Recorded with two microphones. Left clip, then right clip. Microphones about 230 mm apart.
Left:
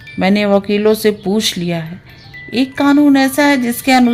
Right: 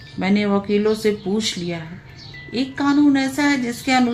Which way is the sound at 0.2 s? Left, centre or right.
Left.